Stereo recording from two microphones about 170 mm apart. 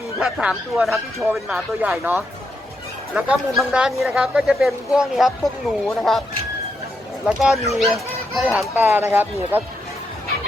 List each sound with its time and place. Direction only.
0.2 s a woman's voice: 5° right (ahead or behind)
7.3 s a woman's voice: 5° right (ahead or behind)